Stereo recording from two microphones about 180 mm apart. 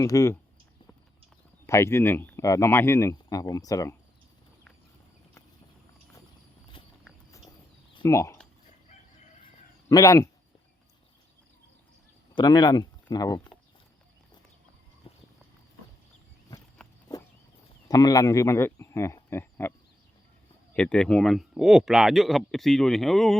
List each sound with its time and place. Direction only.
0.0 s speech: 15° left (ahead or behind)
1.6 s speech: 15° left (ahead or behind)
6.8 s horse: 25° left (ahead or behind)
8.0 s speech: 15° left (ahead or behind)
9.9 s a man's voice: 20° left (ahead or behind)
12.3 s speech: 25° left (ahead or behind)
15.1 s horse: 30° left (ahead or behind)
16.8 s walk: 5° left (ahead or behind)
17.8 s speech: 20° left (ahead or behind)
20.7 s speech: 5° left (ahead or behind)